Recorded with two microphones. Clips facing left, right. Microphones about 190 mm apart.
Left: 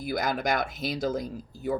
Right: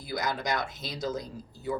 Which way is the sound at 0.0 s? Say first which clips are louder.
Left 4 dB; 55° left (ahead or behind).